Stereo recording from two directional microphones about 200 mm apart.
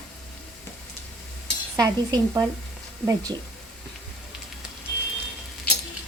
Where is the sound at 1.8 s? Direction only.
20° right (ahead or behind).